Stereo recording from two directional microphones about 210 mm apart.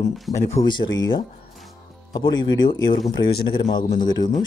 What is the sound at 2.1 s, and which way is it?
Speech, 20° left (ahead or behind).